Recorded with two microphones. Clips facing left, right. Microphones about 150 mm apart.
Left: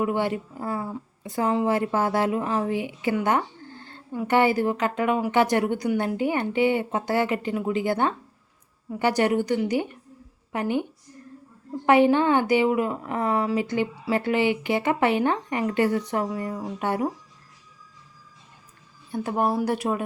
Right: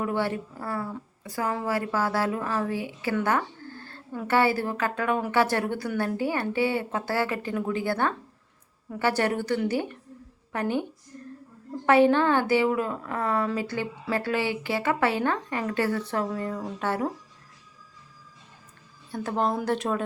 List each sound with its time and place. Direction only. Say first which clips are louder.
0.0 s speech: left 3 dB; 15° left (ahead or behind)
11.1 s a sound: right 3 dB; 15° left (ahead or behind)
11.9 s speech: left 1 dB; 15° left (ahead or behind)
19.1 s speech: left 2 dB; 10° left (ahead or behind)